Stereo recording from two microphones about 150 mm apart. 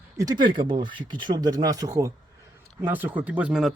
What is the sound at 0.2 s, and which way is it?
Speech, 25° right (ahead or behind).